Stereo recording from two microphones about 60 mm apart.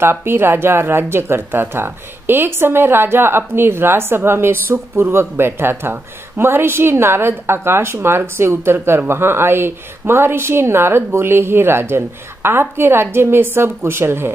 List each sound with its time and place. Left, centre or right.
0.0 s a woman's voice: right